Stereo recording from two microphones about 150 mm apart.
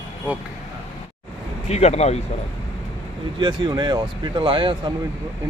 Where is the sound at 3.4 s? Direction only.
30° right (ahead or behind).